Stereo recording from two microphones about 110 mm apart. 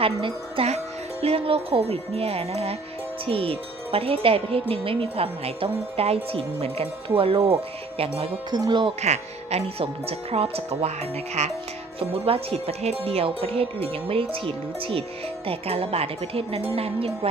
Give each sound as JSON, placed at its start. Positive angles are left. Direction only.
{"t": 0.0, "sound": "speech", "side_deg": -55}
{"t": 8.4, "sound": "speech", "side_deg": -40}
{"t": 9.0, "sound": "speech", "side_deg": -90}
{"t": 11.9, "sound": "speech", "side_deg": -60}